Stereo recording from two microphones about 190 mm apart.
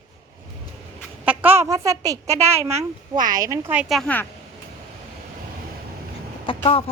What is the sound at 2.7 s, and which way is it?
Speech, 40° right (ahead or behind).